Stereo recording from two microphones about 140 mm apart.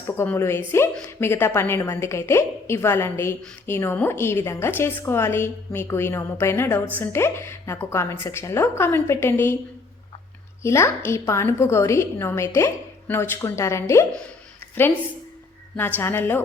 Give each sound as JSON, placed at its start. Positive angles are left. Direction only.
{"t": 0.2, "sound": "a woman's voice", "side_deg": 20}
{"t": 10.6, "sound": "a woman's voice", "side_deg": 20}
{"t": 16.0, "sound": "a woman's voice", "side_deg": 15}